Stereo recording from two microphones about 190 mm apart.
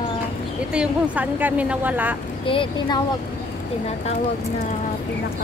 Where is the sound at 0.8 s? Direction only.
10° right (ahead or behind).